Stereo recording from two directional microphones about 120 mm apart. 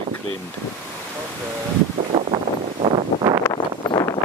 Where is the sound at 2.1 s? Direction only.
50° right (ahead or behind).